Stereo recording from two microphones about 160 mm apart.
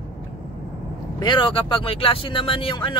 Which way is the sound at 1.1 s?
30° left (ahead or behind).